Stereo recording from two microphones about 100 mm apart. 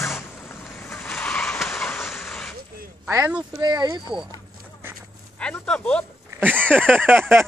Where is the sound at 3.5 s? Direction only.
40° right (ahead or behind).